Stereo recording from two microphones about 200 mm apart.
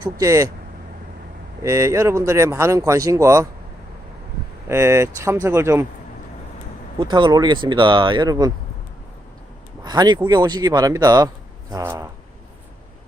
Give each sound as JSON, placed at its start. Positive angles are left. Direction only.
{"t": 0.0, "sound": "speech", "side_deg": -15}
{"t": 1.6, "sound": "speech", "side_deg": -15}
{"t": 4.7, "sound": "speech", "side_deg": -15}
{"t": 7.0, "sound": "speech", "side_deg": -25}
{"t": 9.8, "sound": "speech", "side_deg": -20}